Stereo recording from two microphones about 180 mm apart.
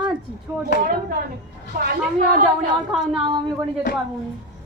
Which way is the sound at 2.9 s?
Centre (ahead or behind).